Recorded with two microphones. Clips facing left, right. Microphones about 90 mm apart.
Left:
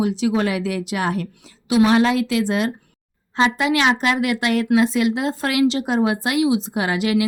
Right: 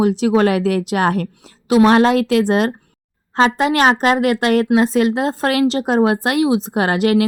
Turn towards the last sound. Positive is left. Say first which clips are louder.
# right 5 dB
turn(degrees=-50)  # may be behind; listen again after turning